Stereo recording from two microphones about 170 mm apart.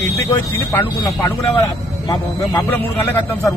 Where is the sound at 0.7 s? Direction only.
10° left (ahead or behind).